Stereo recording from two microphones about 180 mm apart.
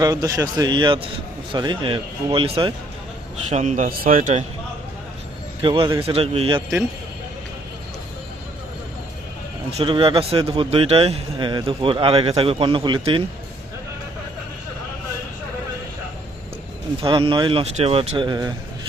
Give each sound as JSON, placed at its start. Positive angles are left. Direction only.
{"t": 0.0, "sound": "a man's voice", "side_deg": -20}
{"t": 3.5, "sound": "speech", "side_deg": -40}
{"t": 5.6, "sound": "a man's voice", "side_deg": -30}
{"t": 9.7, "sound": "a man's voice", "side_deg": -30}
{"t": 17.0, "sound": "a man's voice", "side_deg": -30}